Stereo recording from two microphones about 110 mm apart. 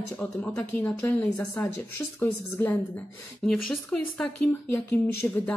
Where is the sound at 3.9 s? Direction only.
10° left (ahead or behind).